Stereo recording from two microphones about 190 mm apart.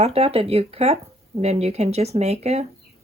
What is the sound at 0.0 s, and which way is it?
Speech, 30° right (ahead or behind).